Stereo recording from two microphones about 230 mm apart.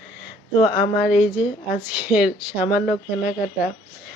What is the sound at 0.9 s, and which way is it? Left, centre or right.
Speech, centre.